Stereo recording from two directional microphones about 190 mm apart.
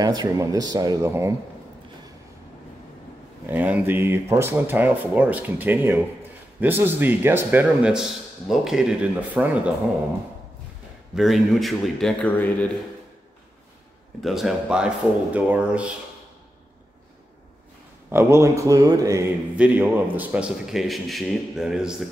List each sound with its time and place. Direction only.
0.0 s speech: 20° right (ahead or behind)
3.4 s speech: 10° right (ahead or behind)
11.1 s a man's voice: centre (ahead or behind)
14.2 s a man's voice: centre (ahead or behind)
18.1 s speech: 15° right (ahead or behind)
19.5 s a man's voice: 10° right (ahead or behind)